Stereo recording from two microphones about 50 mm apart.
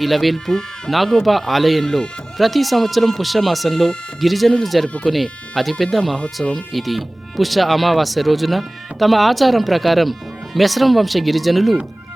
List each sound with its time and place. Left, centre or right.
0.0 s speech: centre
6.1 s speech: centre
6.5 s speech: centre